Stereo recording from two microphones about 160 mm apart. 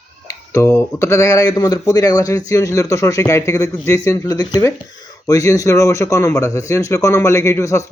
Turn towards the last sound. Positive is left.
turn(degrees=20)  # may be behind; listen again after turning